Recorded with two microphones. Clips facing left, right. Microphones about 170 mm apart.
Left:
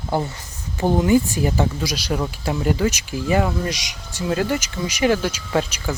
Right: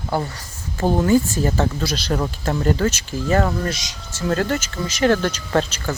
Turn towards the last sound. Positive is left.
turn(degrees=10)  # may be behind; listen again after turning